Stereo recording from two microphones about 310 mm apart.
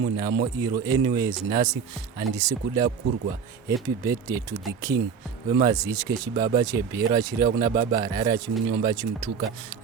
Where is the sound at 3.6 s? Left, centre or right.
Centre.